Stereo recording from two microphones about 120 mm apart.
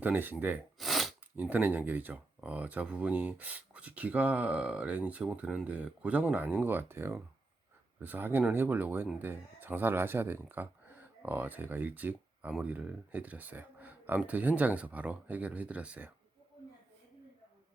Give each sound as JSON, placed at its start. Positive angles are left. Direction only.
{"t": 0.0, "sound": "speech", "side_deg": -15}
{"t": 0.8, "sound": "sneeze", "side_deg": 0}
{"t": 1.4, "sound": "speech", "side_deg": -15}